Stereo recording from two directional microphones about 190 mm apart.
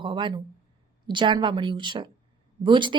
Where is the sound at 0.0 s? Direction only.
25° right (ahead or behind).